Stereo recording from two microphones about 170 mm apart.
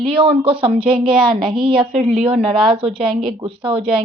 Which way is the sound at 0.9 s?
5° right (ahead or behind).